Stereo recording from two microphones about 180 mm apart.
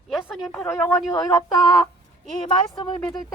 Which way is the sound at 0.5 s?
10° left (ahead or behind).